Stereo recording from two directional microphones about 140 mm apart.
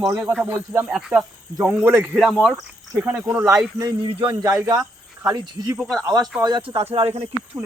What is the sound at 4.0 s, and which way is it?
Speech, 35° right (ahead or behind).